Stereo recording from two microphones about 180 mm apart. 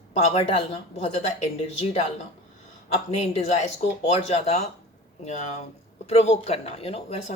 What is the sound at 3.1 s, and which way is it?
Speech, 40° left (ahead or behind).